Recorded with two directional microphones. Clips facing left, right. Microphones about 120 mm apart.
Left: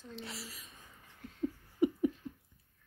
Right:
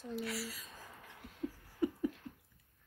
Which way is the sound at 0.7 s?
90° right.